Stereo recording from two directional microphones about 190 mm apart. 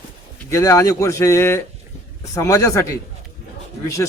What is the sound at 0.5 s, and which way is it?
Speech, 15° left (ahead or behind).